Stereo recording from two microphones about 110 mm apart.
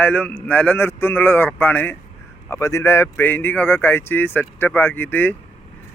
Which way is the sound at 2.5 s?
30° left (ahead or behind).